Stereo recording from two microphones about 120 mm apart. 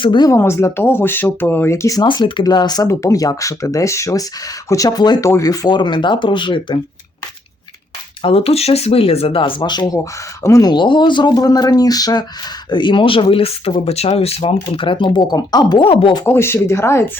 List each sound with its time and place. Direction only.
0.0 s speech: 40° left (ahead or behind)
0.3 s speech: 20° left (ahead or behind)
2.0 s speech: 45° left (ahead or behind)
8.2 s speech: 50° left (ahead or behind); by 15.9 s 35° left (ahead or behind)
15.9 s speech: 50° left (ahead or behind)
16.2 s speech: 20° left (ahead or behind)